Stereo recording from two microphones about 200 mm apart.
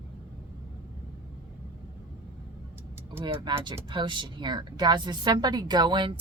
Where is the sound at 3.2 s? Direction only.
25° right (ahead or behind).